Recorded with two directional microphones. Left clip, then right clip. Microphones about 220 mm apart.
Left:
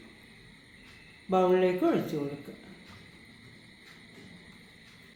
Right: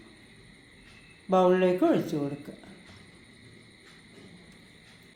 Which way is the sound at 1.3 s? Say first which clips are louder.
Right 2 dB; 25° right (ahead or behind).